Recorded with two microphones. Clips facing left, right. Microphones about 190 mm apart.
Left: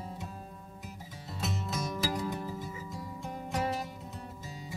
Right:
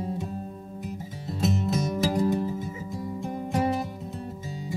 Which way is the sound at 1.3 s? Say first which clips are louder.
Right 10 dB; 35° right (ahead or behind).